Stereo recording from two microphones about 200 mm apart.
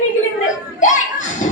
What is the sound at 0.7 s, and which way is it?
Children playing, 40° left (ahead or behind).